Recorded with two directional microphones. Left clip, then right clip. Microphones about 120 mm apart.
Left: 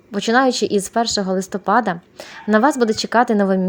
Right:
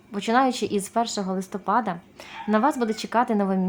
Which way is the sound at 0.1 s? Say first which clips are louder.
Left 6 dB; 40° left (ahead or behind).